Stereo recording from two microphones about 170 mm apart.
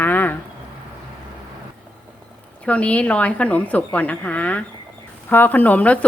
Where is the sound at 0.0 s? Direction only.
10° left (ahead or behind).